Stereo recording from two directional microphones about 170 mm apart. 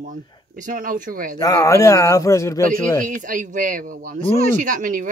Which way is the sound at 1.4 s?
20° left (ahead or behind).